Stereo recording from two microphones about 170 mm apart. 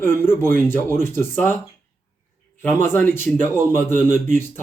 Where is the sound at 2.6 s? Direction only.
15° left (ahead or behind).